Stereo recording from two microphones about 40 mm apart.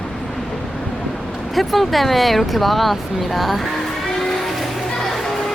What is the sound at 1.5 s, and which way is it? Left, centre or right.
Speech, centre.